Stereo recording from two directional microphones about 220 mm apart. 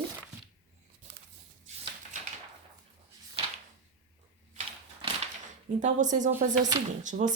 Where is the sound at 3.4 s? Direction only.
25° right (ahead or behind).